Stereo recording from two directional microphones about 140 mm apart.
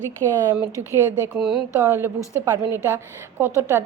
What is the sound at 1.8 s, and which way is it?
A woman's voice, 15° right (ahead or behind).